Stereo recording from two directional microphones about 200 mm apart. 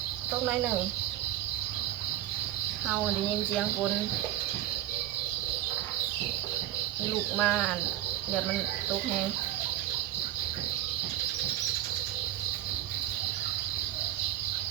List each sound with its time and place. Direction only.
0.4 s speech: 5° right (ahead or behind)
7.3 s speech: 5° left (ahead or behind)